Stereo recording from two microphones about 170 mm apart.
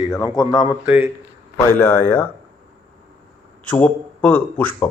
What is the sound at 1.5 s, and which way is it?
Speech, 15° left (ahead or behind).